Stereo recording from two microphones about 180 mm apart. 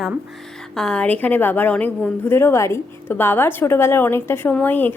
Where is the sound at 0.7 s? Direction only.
5° left (ahead or behind).